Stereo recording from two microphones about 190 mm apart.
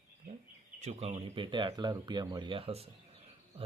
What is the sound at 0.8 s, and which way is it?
Speech, 30° right (ahead or behind).